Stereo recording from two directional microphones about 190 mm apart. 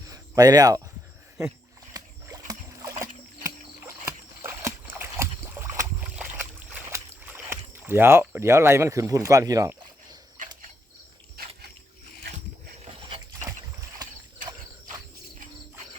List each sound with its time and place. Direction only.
0.1 s speech: 20° right (ahead or behind)
1.9 s rowboat: 20° right (ahead or behind)
2.5 s boat: 15° right (ahead or behind)
3.4 s rowboat: 15° right (ahead or behind)
10.4 s cricket: 45° right (ahead or behind)
11.4 s a sound: 50° right (ahead or behind)
12.8 s dog: 25° right (ahead or behind)